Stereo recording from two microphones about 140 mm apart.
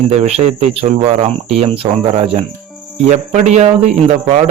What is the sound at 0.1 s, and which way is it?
Speech, 50° right (ahead or behind).